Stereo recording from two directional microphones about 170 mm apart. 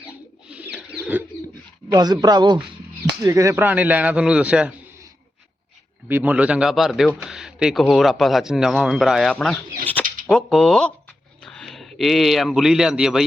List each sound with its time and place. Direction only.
0.4 s bird: 5° right (ahead or behind)
1.9 s a man's voice: 25° right (ahead or behind); by 4.7 s 5° right (ahead or behind)
6.1 s speech: 10° right (ahead or behind)
9.3 s a sound: 5° left (ahead or behind)
10.2 s a man's voice: 5° left (ahead or behind)